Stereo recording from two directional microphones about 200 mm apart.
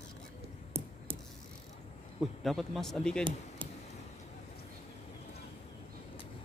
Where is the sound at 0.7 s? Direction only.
30° right (ahead or behind).